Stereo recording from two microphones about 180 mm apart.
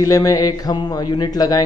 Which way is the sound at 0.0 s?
20° left (ahead or behind).